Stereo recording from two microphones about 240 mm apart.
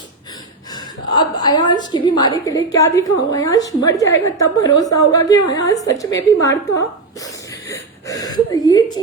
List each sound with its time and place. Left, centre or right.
0.7 s a woman's voice: centre
7.7 s gasp: centre